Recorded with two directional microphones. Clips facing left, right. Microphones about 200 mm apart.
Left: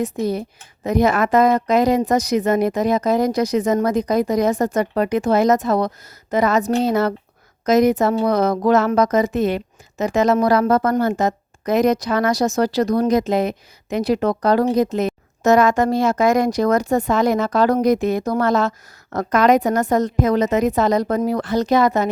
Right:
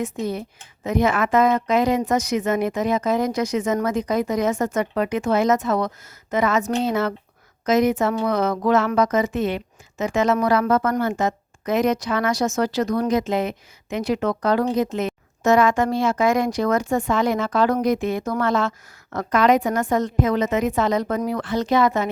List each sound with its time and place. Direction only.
0.0 s speech: 35° left (ahead or behind)